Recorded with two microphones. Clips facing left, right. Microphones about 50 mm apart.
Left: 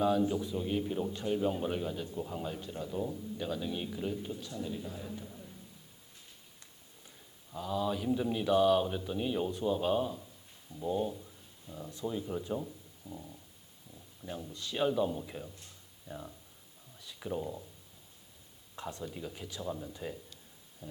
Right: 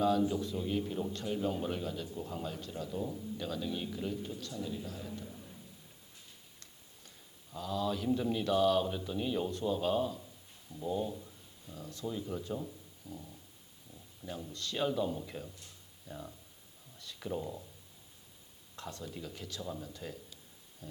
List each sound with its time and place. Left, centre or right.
0.0 s a man's voice: centre
7.5 s a man's voice: centre
17.0 s a sound: centre
18.8 s a man's voice: centre